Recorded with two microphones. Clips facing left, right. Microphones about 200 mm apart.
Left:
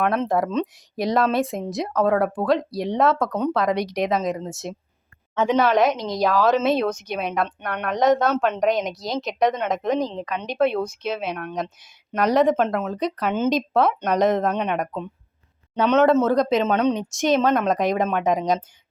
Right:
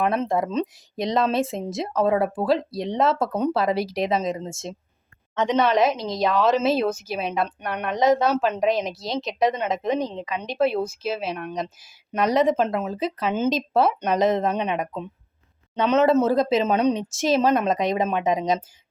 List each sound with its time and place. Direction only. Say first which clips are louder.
0.0 s speech: left 1 dB; centre (ahead or behind)
0.9 s speech: left 2 dB; 20° right (ahead or behind)
1.2 s speech: left 1 dB; centre (ahead or behind)
5.3 s speech: left 1 dB; 5° left (ahead or behind)